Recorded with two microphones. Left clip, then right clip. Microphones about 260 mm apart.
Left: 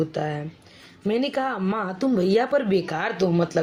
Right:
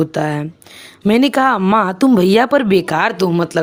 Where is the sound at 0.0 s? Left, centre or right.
Right.